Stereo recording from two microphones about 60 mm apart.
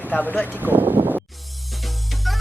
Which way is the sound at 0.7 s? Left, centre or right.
Right.